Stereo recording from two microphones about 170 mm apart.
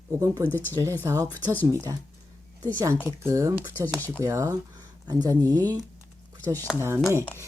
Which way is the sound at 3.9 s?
10° left (ahead or behind).